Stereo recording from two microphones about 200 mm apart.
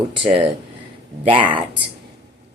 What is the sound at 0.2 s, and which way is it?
Speech, 25° right (ahead or behind).